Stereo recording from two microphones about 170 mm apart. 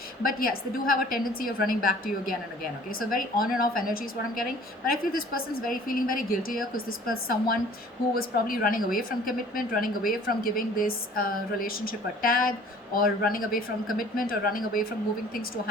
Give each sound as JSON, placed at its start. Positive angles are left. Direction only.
{"t": 0.2, "sound": "a woman's voice", "side_deg": 55}